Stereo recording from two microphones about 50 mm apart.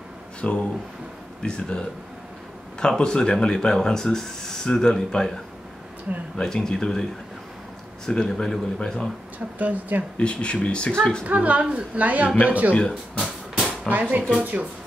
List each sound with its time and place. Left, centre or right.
0.4 s speech: left
6.3 s speech: centre
9.6 s speech: right
10.1 s speech: left
11.2 s a woman's voice: right
12.7 s speech: centre
13.7 s a sound: right
14.4 s speech: right